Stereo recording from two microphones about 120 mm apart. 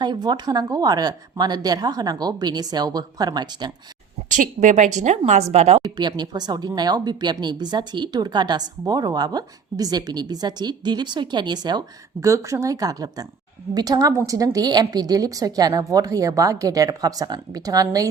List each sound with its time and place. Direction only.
0.0 s speech: 40° right (ahead or behind)
4.3 s speech: 90° right; by 5.8 s 60° right (ahead or behind)
5.8 s speech: 35° right (ahead or behind)
12.2 s a woman's voice: 25° right (ahead or behind)